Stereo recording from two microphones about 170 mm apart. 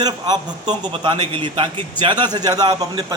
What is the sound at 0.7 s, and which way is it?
A man's voice, 30° right (ahead or behind).